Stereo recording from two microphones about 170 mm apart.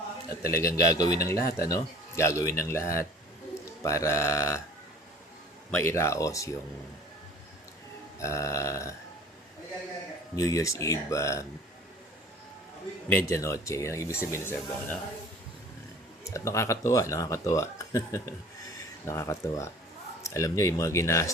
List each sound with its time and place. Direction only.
0.4 s a man's voice: 20° left (ahead or behind)
5.7 s speech: 15° left (ahead or behind)
8.2 s speech: 15° left (ahead or behind)
10.3 s speech: 20° left (ahead or behind)
13.1 s speech: 15° left (ahead or behind)
16.2 s speech: 15° left (ahead or behind)